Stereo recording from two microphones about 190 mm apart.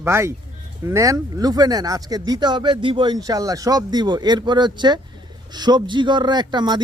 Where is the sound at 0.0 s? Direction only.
15° right (ahead or behind).